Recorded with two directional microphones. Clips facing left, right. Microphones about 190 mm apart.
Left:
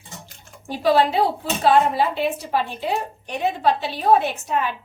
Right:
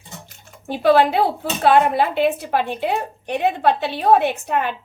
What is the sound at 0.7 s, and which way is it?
A woman's voice, 60° right (ahead or behind).